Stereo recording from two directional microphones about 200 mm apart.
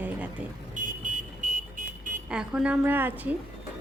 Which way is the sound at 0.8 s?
40° right (ahead or behind).